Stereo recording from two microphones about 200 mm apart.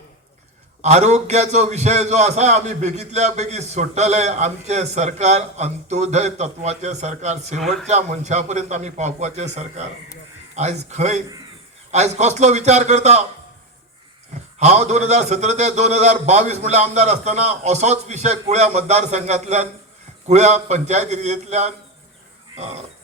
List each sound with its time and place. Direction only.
0.8 s a man's voice: 35° right (ahead or behind)
14.6 s a man's voice: 35° right (ahead or behind)